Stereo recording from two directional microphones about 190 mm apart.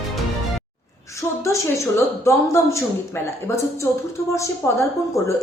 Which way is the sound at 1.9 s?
15° left (ahead or behind).